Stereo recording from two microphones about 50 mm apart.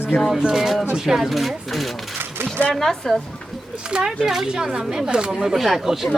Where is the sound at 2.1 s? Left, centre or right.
Right.